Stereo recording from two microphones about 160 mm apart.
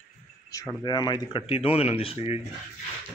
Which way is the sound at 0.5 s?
20° left (ahead or behind).